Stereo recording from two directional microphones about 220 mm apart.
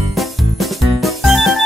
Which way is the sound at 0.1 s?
Centre (ahead or behind).